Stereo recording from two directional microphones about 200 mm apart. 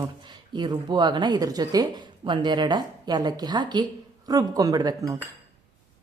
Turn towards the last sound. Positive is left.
turn(degrees=-20)  # may be behind; listen again after turning